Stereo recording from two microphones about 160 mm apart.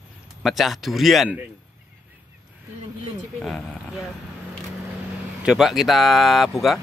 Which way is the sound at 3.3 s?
5° left (ahead or behind).